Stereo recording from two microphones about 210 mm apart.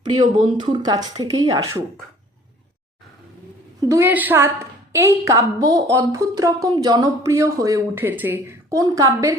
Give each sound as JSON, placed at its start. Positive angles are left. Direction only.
{"t": 0.5, "sound": "speech", "side_deg": -20}
{"t": 3.8, "sound": "a woman's voice", "side_deg": -15}